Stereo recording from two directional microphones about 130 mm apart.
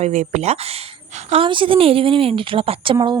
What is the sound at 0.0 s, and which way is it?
Speech, 65° right (ahead or behind).